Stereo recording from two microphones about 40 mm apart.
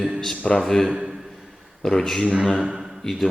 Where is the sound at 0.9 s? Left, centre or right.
Right.